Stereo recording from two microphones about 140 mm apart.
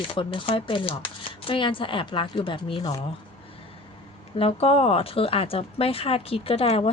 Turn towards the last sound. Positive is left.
turn(degrees=45)  # may be behind; listen again after turning